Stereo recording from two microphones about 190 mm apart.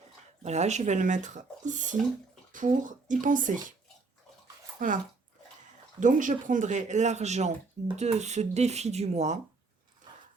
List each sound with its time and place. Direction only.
0.4 s speech: 35° right (ahead or behind)
4.8 s speech: 45° right (ahead or behind)
6.0 s speech: 40° right (ahead or behind)